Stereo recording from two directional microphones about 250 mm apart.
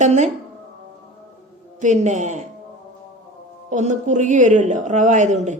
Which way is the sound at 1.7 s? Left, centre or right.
Right.